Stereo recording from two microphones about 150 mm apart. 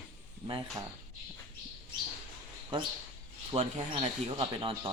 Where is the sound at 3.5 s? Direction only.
45° right (ahead or behind).